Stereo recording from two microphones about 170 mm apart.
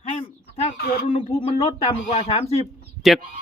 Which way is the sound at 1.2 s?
30° left (ahead or behind).